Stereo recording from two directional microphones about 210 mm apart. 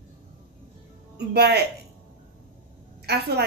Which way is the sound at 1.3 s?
50° right (ahead or behind).